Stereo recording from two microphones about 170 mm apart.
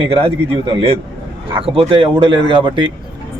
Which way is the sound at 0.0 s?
30° right (ahead or behind).